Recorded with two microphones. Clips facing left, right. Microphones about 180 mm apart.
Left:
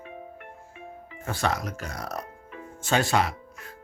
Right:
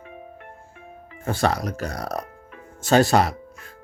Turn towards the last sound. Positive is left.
turn(degrees=-40)  # may be behind; listen again after turning